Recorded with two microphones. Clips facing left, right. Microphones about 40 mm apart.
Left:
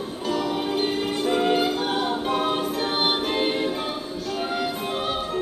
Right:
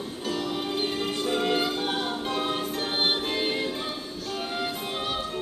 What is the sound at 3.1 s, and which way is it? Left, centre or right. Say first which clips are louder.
Music: left 4 dB; centre.